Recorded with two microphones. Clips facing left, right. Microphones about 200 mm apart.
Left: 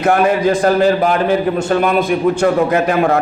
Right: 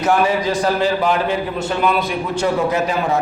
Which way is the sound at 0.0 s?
55° left (ahead or behind).